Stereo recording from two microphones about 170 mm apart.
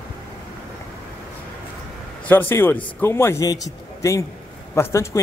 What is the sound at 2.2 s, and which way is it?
Speech, 10° left (ahead or behind).